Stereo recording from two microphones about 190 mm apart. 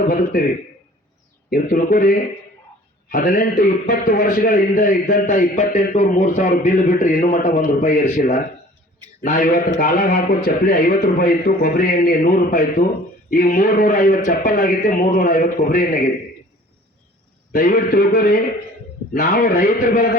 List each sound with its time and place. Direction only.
0.1 s a man's voice: 50° left (ahead or behind)
1.5 s a man's voice: 50° left (ahead or behind)
17.5 s a man's voice: 50° left (ahead or behind)